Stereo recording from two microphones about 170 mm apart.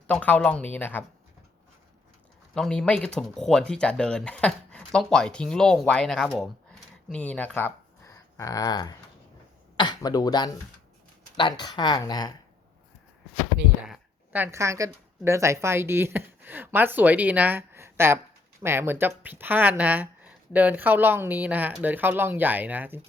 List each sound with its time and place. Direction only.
0.1 s speech: 10° left (ahead or behind)
2.6 s speech: 5° left (ahead or behind); by 12.3 s 25° left (ahead or behind)
13.8 s a woman's voice: 5° right (ahead or behind)